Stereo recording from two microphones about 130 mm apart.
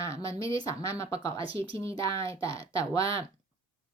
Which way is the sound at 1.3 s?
45° right (ahead or behind).